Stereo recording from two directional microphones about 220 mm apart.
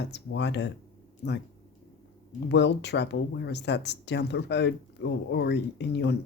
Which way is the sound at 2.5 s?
50° left (ahead or behind).